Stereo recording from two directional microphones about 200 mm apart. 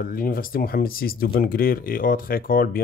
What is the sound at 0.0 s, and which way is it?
Speech, 45° left (ahead or behind).